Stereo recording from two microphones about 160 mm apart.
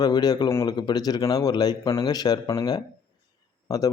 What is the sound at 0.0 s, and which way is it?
A man's voice, 25° left (ahead or behind).